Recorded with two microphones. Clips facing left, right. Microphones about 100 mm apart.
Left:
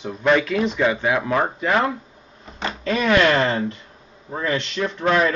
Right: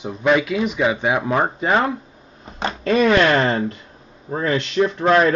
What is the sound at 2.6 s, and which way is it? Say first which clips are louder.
A man's voice: right 5 dB; 30° right (ahead or behind).